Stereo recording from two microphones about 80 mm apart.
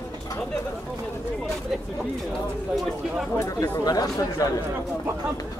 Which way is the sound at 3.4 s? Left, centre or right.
Left.